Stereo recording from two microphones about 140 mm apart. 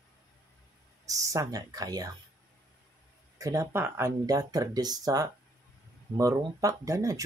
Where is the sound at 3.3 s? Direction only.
25° right (ahead or behind).